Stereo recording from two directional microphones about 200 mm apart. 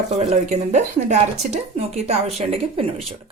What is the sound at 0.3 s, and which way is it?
Speech, 35° right (ahead or behind).